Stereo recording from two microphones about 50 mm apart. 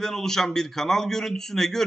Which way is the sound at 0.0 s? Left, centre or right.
Centre.